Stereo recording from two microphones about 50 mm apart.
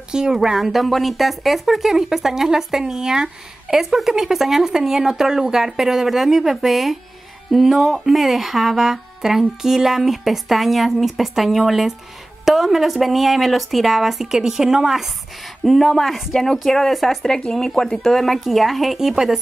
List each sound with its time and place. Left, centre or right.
0.1 s speech: centre
17.3 s speech: centre